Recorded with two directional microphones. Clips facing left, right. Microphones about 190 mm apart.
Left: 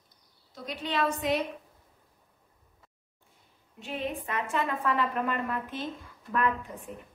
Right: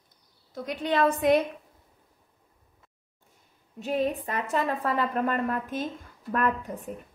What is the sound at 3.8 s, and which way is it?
A woman's voice, 40° right (ahead or behind).